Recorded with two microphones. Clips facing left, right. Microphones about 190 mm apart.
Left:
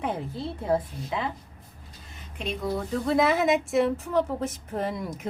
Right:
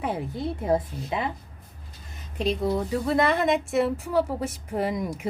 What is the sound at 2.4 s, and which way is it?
Speech, 35° right (ahead or behind).